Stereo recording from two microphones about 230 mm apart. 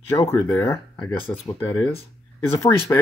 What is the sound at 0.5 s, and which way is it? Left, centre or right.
Speech, centre.